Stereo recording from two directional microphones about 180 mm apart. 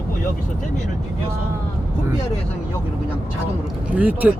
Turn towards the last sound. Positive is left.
turn(degrees=-10)  # may be behind; listen again after turning